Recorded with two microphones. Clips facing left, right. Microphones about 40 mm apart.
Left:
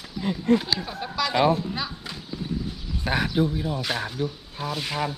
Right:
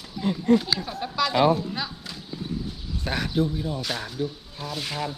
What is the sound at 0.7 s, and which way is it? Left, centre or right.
Speech, centre.